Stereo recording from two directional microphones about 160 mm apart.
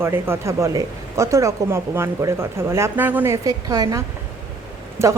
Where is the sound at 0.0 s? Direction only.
15° right (ahead or behind).